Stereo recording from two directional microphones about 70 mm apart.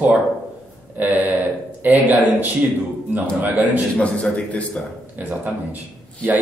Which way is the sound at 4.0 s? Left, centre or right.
Centre.